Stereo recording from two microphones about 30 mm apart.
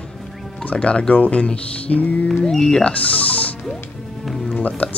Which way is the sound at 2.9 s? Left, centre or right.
Left.